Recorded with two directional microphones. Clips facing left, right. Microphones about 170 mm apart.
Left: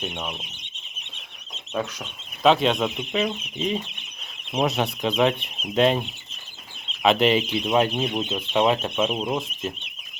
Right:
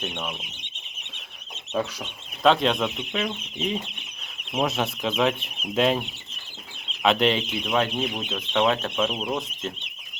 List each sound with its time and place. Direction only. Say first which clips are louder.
0.0 s speech: left 1 dB; 10° left (ahead or behind)
2.4 s speech: left 1 dB; centre (ahead or behind)
7.7 s speech: left 3 dB; 20° left (ahead or behind)